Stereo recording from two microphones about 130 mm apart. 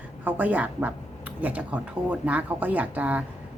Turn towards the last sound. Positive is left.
turn(degrees=-10)  # may be behind; listen again after turning